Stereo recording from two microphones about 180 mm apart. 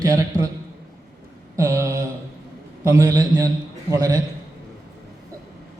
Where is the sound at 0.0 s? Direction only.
20° right (ahead or behind).